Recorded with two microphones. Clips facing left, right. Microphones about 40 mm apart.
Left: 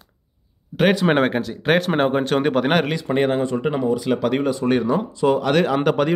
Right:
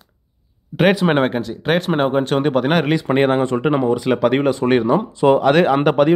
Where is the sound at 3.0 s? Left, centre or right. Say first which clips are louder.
Right 4 dB; right.